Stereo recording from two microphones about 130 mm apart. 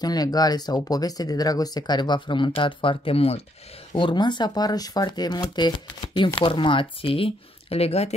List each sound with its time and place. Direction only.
0.0 s speech: 30° left (ahead or behind); by 3.4 s 50° left (ahead or behind)
3.9 s speech: 35° left (ahead or behind); by 8.1 s 50° left (ahead or behind)